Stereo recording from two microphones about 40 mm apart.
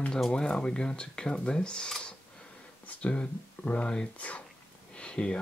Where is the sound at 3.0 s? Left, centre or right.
Left.